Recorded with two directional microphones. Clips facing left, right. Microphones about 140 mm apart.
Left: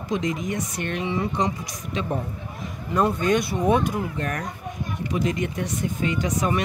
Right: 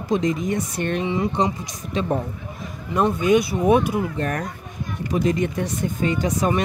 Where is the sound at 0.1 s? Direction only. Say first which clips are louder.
Right 4 dB; 35° right (ahead or behind).